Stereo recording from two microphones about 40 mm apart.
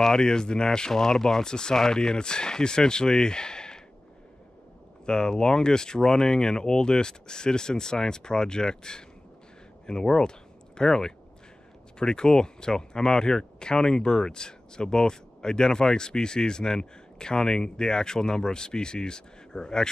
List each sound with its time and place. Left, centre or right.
0.0 s speech: centre
5.0 s speech: centre